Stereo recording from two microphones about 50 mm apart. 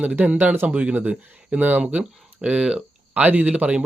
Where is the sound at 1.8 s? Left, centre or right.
Right.